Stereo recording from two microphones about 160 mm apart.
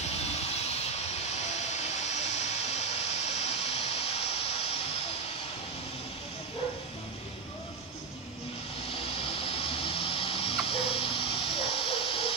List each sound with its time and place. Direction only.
1.7 s vehicle: 45° left (ahead or behind)
3.3 s a sound: 40° left (ahead or behind)
8.9 s vehicle: 35° left (ahead or behind)